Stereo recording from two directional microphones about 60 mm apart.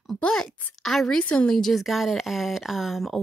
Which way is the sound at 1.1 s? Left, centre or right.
Centre.